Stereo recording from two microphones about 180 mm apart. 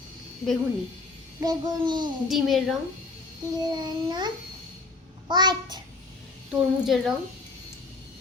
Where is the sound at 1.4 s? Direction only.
25° right (ahead or behind).